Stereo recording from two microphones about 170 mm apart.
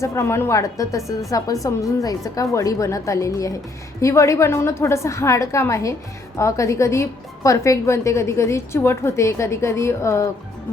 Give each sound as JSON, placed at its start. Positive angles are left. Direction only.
{"t": 0.0, "sound": "a woman's voice", "side_deg": 15}